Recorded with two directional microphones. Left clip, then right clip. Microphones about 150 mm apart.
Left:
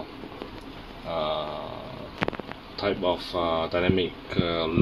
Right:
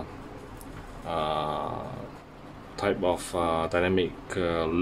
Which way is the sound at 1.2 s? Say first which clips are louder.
Left 1 dB; 15° right (ahead or behind).